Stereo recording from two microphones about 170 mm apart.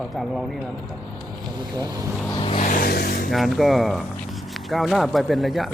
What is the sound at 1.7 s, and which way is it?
Speech, 20° right (ahead or behind).